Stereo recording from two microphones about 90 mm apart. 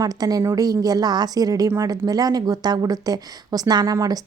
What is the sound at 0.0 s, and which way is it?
Speech, 45° right (ahead or behind).